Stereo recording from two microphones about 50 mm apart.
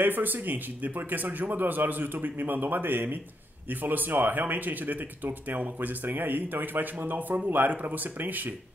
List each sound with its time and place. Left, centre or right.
0.0 s a man's voice: right